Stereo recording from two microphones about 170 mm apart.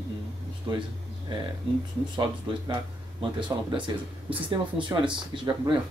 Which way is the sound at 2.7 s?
30° right (ahead or behind).